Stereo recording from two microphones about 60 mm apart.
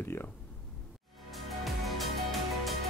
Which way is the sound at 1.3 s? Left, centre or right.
Centre.